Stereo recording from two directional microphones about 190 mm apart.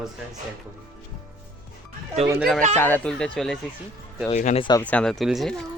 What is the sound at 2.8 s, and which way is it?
Speech, 10° left (ahead or behind).